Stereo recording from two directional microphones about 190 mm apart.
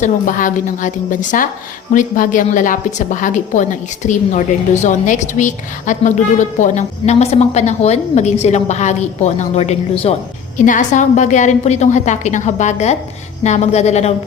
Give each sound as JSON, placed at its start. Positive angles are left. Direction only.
{"t": 0.0, "sound": "a woman's voice", "side_deg": 45}